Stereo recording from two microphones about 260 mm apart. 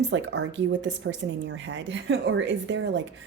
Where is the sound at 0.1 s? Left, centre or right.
Right.